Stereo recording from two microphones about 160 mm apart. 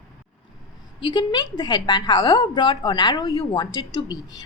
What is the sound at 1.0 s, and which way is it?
A woman's voice, 25° left (ahead or behind).